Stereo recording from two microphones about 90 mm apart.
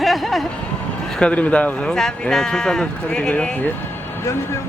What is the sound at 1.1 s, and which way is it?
Speech, 10° left (ahead or behind).